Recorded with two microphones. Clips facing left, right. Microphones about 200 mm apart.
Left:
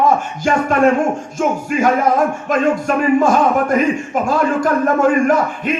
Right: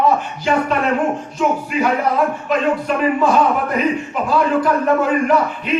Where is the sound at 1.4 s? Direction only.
45° left (ahead or behind).